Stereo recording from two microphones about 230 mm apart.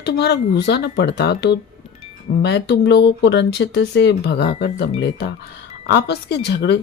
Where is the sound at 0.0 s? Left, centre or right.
Left.